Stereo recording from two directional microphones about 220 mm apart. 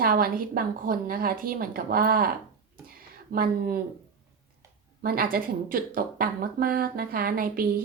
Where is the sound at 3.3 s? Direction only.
40° right (ahead or behind).